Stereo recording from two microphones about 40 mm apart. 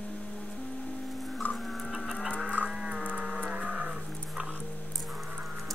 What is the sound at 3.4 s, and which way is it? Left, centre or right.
Livestock, right.